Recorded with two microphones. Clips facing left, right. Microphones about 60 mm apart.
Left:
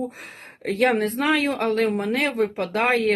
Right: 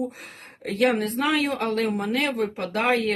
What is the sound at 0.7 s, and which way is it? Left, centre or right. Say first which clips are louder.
Speech: left 1 dB; left.